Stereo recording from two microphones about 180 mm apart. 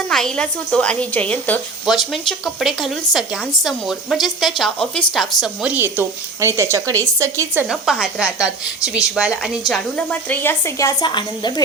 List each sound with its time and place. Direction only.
0.1 s speech: 5° left (ahead or behind)
5.7 s speech: 10° right (ahead or behind)
7.7 s a woman's voice: centre (ahead or behind); by 11.6 s 25° left (ahead or behind)